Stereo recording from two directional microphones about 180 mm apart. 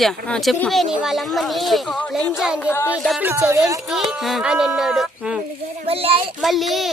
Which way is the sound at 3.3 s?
15° right (ahead or behind).